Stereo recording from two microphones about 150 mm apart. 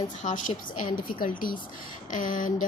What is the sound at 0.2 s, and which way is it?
A woman's voice, 55° left (ahead or behind).